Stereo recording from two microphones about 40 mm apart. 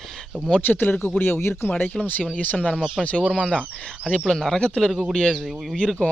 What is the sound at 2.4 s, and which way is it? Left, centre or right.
Speech, left.